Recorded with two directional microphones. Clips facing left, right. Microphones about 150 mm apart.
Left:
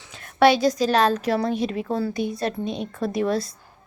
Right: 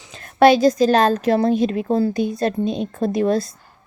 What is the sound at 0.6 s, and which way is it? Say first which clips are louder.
Speech: right 5 dB; 50° right (ahead or behind).